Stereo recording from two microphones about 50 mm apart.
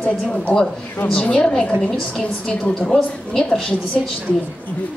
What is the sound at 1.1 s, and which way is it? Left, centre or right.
A woman's voice, centre.